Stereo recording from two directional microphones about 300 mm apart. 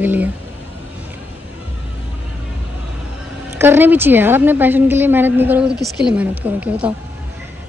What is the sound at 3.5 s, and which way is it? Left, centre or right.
A woman's voice, centre.